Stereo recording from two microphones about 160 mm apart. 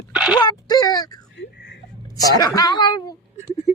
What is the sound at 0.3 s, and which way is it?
Speech, 25° left (ahead or behind).